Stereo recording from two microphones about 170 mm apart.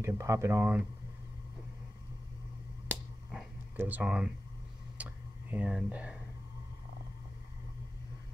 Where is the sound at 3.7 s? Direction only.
10° right (ahead or behind).